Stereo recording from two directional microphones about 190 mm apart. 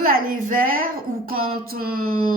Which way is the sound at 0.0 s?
50° right (ahead or behind).